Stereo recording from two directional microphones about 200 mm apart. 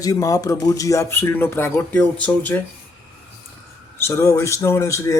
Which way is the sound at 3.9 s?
15° left (ahead or behind).